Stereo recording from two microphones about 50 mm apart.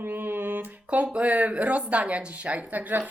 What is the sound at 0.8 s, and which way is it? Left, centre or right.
Speech, right.